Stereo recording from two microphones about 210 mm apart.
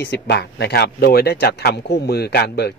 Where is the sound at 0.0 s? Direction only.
50° left (ahead or behind).